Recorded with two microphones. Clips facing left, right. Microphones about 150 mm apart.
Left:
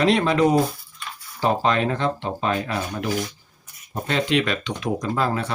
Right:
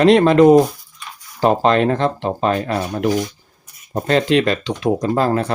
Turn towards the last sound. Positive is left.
turn(degrees=-40)  # may be behind; listen again after turning